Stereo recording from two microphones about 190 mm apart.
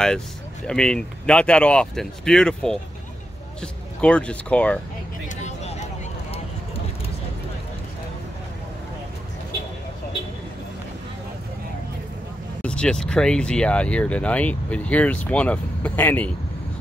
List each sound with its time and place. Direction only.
0.7 s speech: 5° left (ahead or behind)
5.3 s a sound: 35° left (ahead or behind)
12.6 s speech: 5° left (ahead or behind)